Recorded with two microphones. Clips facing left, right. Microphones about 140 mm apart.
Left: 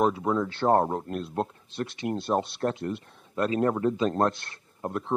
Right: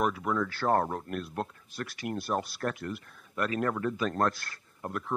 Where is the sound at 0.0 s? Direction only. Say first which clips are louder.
Left 4 dB; 25° left (ahead or behind).